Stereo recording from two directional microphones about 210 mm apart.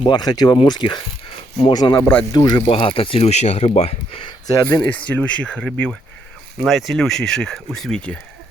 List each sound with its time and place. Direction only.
0.0 s speech: 20° left (ahead or behind)
4.4 s speech: 15° left (ahead or behind)